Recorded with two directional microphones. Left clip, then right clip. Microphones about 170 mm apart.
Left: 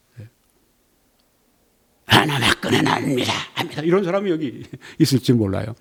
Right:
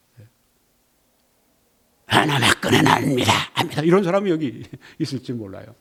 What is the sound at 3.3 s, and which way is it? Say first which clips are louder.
Speech: right 4 dB; 35° right (ahead or behind).